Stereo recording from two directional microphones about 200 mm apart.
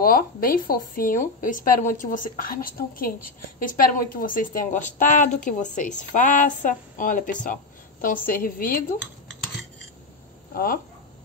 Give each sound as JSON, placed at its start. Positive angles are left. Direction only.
{"t": 0.0, "sound": "a woman's voice", "side_deg": 45}
{"t": 10.5, "sound": "speech", "side_deg": 45}